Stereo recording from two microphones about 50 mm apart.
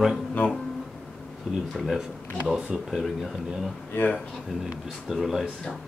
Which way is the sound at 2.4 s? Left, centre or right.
Centre.